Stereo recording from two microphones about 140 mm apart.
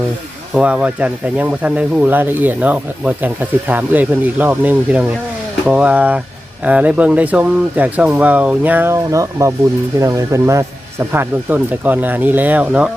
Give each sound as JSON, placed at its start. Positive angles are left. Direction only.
{"t": 0.5, "sound": "speech", "side_deg": -5}